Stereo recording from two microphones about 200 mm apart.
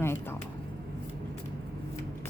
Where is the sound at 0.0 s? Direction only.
10° left (ahead or behind).